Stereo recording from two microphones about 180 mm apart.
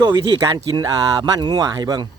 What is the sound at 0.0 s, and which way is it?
Speech, 20° right (ahead or behind).